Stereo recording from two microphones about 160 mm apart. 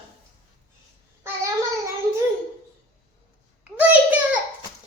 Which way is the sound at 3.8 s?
10° right (ahead or behind).